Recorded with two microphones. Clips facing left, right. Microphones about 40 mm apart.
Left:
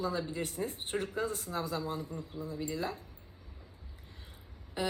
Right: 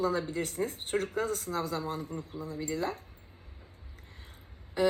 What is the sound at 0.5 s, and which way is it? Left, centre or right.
A woman's voice, right.